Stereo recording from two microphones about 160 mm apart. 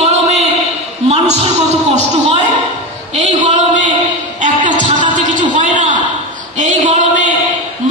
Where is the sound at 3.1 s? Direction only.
45° right (ahead or behind).